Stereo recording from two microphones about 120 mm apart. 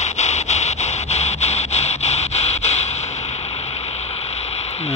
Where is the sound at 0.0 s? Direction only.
70° left (ahead or behind).